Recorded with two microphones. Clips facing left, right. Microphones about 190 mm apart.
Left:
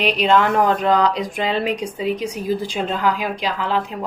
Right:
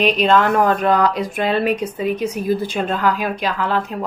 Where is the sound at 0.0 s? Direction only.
15° left (ahead or behind).